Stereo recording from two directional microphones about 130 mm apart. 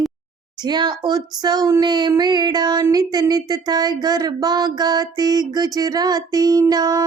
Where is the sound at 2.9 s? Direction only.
30° right (ahead or behind).